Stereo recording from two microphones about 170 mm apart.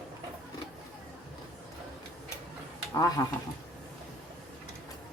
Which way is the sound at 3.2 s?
20° left (ahead or behind).